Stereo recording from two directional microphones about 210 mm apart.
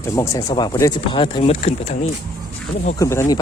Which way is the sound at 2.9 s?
15° left (ahead or behind).